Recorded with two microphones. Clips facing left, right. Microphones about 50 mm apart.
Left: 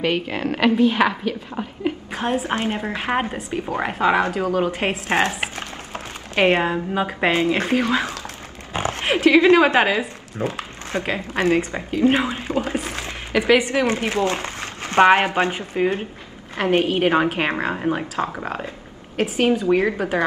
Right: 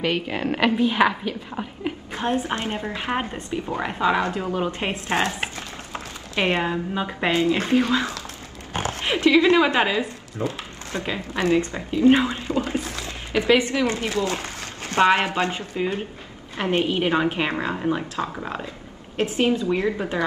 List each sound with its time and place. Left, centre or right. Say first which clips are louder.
0.0 s a woman's voice: left 2 dB; centre
2.5 s speech: left 3 dB; left
3.7 s a woman's voice: left 3 dB; left
4.3 s a woman's voice: left 4 dB; left
4.6 s speech: left 4 dB; left
5.0 s a woman's voice: left 2 dB; left
6.6 s speech: left 3 dB; centre
7.1 s a woman's voice: even; left
17.6 s speech: left 2 dB; left
19.6 s a woman's voice: left 4 dB; left